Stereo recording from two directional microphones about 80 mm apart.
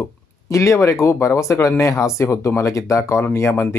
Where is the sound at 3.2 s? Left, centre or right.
Left.